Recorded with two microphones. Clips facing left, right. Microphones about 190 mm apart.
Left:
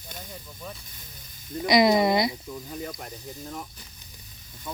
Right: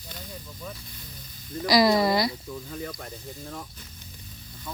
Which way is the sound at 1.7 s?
20° left (ahead or behind).